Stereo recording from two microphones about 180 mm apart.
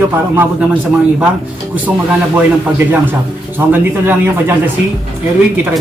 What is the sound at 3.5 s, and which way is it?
A man's voice, 10° right (ahead or behind).